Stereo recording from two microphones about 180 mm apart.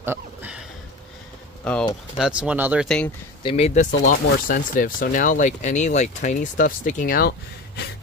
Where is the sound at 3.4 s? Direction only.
30° left (ahead or behind).